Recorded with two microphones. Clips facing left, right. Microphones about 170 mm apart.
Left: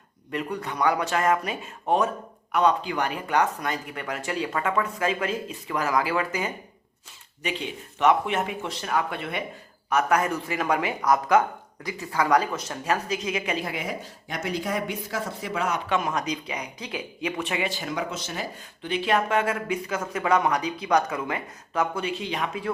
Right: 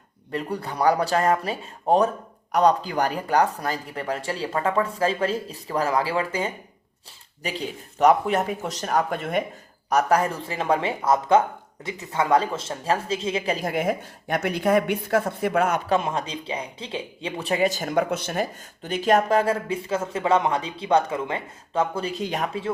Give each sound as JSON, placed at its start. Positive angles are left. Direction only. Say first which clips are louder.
{"t": 0.3, "sound": "speech", "louder": "right 1 dB", "side_deg": -35}
{"t": 9.9, "sound": "a woman's voice", "louder": "right 2 dB", "side_deg": -35}
{"t": 15.9, "sound": "speech", "louder": "right 2 dB", "side_deg": -30}